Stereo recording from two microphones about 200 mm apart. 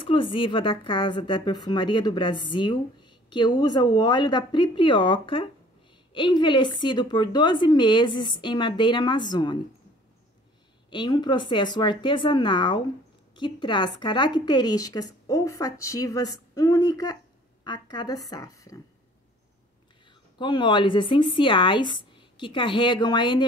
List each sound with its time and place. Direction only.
0.0 s speech: 25° left (ahead or behind)
10.9 s speech: 20° left (ahead or behind)
20.3 s speech: 25° left (ahead or behind)